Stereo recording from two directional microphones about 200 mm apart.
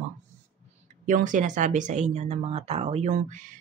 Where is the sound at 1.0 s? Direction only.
40° right (ahead or behind).